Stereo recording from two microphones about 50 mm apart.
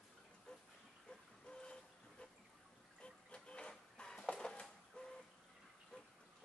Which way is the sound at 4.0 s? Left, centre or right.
Centre.